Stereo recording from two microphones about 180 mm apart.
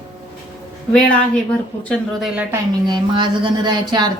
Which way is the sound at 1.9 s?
5° right (ahead or behind).